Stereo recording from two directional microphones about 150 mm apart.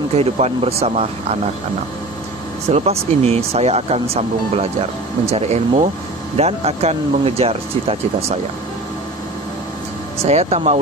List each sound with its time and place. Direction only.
0.1 s speech: 45° right (ahead or behind)
2.7 s speech: 45° right (ahead or behind)
10.2 s speech: 45° right (ahead or behind)